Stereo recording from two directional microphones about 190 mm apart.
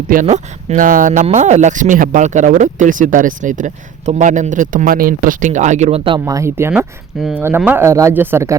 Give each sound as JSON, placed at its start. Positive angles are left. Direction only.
{"t": 0.1, "sound": "speech", "side_deg": -40}
{"t": 6.1, "sound": "speech", "side_deg": -20}
{"t": 7.2, "sound": "speech", "side_deg": 0}